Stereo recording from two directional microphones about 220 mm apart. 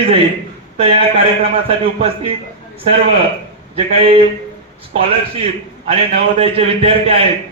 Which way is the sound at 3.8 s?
25° right (ahead or behind).